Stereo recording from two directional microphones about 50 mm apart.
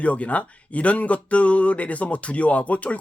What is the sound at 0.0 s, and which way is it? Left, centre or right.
Speech, left.